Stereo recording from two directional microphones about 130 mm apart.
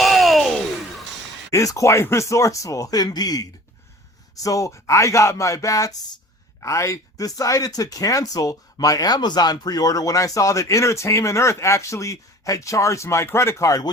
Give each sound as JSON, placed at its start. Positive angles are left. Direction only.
{"t": 0.0, "sound": "a sound", "side_deg": 0}
{"t": 1.5, "sound": "speech", "side_deg": 25}
{"t": 4.4, "sound": "speech", "side_deg": 25}